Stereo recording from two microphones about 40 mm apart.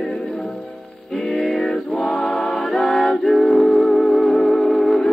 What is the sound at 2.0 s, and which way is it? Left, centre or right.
Music, centre.